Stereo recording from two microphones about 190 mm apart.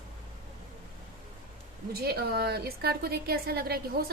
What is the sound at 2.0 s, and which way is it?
A woman's voice, 55° right (ahead or behind).